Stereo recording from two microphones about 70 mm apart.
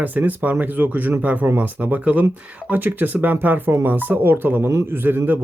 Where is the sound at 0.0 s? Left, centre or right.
Right.